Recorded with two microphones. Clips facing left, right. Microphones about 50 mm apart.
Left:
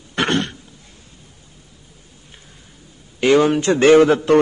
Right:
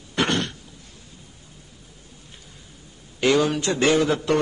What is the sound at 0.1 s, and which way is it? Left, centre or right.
Throat clearing, left.